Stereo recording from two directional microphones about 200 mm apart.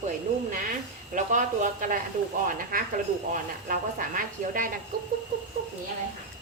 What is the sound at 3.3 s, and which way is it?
A woman's voice, 45° right (ahead or behind).